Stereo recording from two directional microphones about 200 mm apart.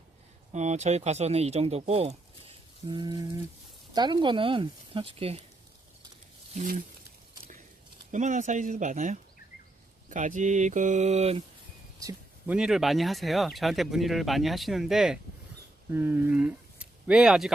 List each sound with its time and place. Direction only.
0.5 s speech: 35° right (ahead or behind)
6.5 s speech: 35° right (ahead or behind)
8.1 s speech: 40° right (ahead or behind)
12.5 s speech: 5° right (ahead or behind)